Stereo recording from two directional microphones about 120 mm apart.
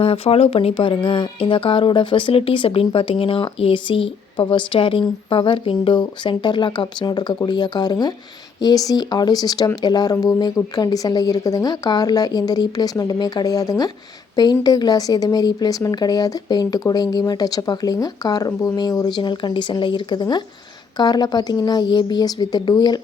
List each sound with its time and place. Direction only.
0.0 s speech: 55° left (ahead or behind); by 23.0 s 35° left (ahead or behind)